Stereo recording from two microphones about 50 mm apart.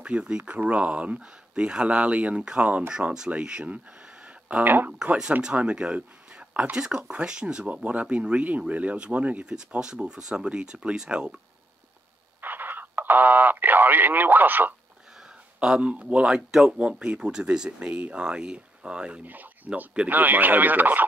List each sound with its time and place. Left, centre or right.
0.0 s speech: right
4.6 s speech: right
5.0 s speech: centre
9.5 s speech: centre
12.4 s radio: right
15.6 s speech: centre
16.3 s speech: centre
16.7 s speech: right
17.6 s speech: right
19.2 s speech: right